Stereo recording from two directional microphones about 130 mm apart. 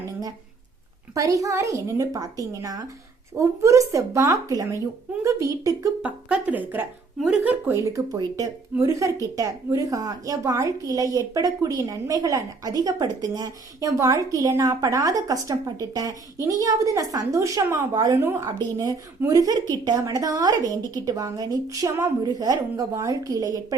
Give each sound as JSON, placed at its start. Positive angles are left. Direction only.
{"t": 1.1, "sound": "a woman's voice", "side_deg": -25}
{"t": 6.0, "sound": "a woman's voice", "side_deg": -10}